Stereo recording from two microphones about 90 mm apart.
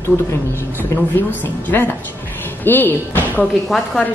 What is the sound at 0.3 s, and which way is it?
A woman's voice, 25° left (ahead or behind).